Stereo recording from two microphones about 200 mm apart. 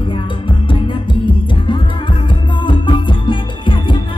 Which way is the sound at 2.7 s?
25° left (ahead or behind).